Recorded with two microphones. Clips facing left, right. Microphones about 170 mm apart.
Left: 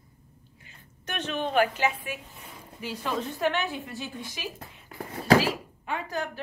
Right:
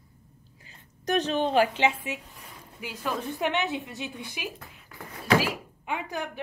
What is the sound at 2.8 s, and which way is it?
A woman's voice, 10° right (ahead or behind).